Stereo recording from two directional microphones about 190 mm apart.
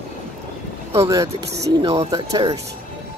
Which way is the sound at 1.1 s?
15° right (ahead or behind).